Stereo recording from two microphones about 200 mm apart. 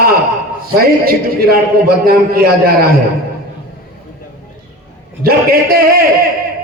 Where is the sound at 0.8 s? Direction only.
50° right (ahead or behind).